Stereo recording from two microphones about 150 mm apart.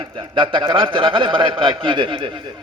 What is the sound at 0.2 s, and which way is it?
A man's voice, 35° right (ahead or behind).